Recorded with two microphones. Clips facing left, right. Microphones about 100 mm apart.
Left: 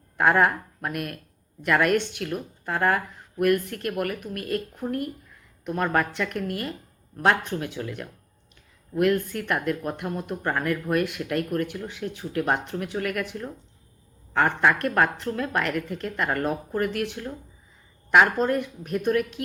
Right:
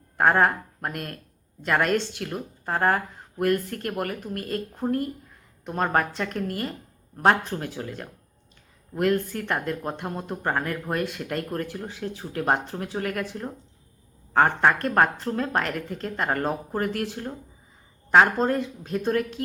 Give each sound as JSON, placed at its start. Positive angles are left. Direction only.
{"t": 0.2, "sound": "a woman's voice", "side_deg": -35}